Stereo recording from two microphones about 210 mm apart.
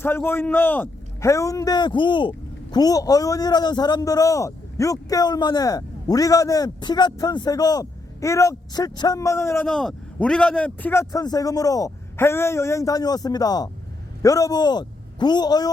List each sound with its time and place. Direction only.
0.0 s a man's voice: 10° left (ahead or behind)
9.6 s a man's voice: centre (ahead or behind); by 15.7 s 20° left (ahead or behind)